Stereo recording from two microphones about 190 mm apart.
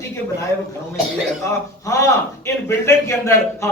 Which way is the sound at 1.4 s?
15° left (ahead or behind).